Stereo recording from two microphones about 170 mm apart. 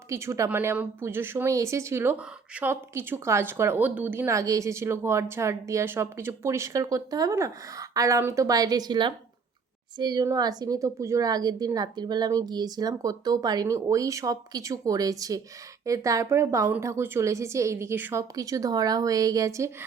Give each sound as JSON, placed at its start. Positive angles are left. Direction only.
{"t": 0.1, "sound": "a woman's voice", "side_deg": -15}